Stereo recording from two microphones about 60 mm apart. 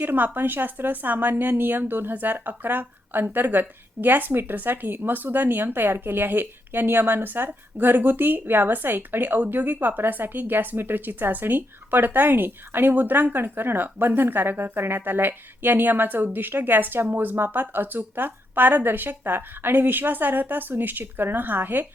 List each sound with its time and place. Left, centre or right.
0.0 s speech: right